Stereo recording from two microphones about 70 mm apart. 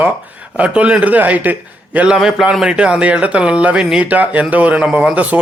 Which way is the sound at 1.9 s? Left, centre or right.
Centre.